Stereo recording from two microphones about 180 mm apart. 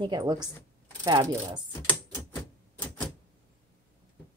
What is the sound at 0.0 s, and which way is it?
Speech, 25° right (ahead or behind).